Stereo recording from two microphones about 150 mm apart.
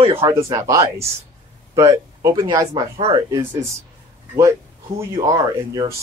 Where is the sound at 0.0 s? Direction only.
40° right (ahead or behind).